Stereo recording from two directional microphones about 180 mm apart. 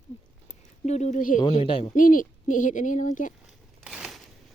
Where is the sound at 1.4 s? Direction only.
30° left (ahead or behind).